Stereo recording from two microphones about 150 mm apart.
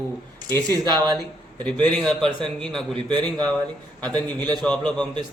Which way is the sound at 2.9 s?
30° right (ahead or behind).